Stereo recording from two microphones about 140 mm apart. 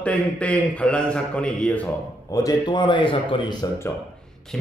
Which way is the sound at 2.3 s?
25° left (ahead or behind).